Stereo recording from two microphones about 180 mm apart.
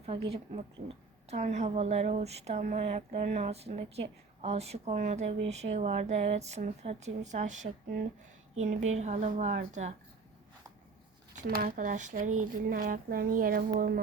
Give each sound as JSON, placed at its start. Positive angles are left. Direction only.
{"t": 0.0, "sound": "a woman's voice", "side_deg": -30}
{"t": 11.4, "sound": "speech", "side_deg": -60}